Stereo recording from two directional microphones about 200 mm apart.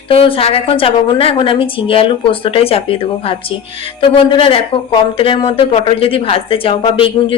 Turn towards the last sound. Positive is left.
turn(degrees=25)  # may be behind; listen again after turning